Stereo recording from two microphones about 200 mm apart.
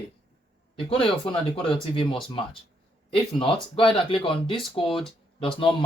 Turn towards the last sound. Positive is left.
turn(degrees=25)  # may be behind; listen again after turning